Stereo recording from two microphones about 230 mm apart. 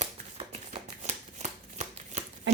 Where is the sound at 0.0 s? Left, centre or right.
Right.